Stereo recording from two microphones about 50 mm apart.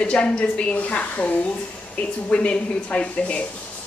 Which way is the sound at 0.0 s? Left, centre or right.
Left.